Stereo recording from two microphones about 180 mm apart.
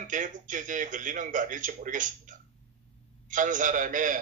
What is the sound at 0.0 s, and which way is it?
A man's voice, 45° right (ahead or behind).